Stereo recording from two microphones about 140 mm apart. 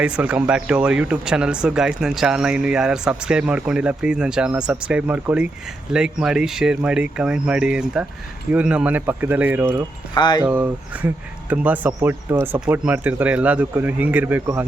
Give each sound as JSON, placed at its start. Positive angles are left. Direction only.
{"t": 0.0, "sound": "speech", "side_deg": -10}
{"t": 10.2, "sound": "speech", "side_deg": 30}
{"t": 10.4, "sound": "speech", "side_deg": -10}